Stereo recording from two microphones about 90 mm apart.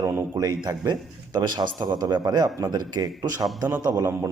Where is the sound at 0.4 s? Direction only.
50° right (ahead or behind).